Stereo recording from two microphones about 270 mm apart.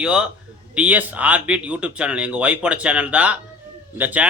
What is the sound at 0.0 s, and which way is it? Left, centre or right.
Speech, centre.